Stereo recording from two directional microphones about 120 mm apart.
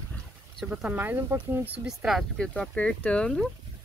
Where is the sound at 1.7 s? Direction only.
5° right (ahead or behind).